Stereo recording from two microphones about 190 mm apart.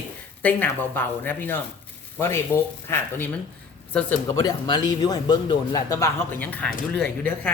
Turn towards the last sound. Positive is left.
turn(degrees=5)  # may be behind; listen again after turning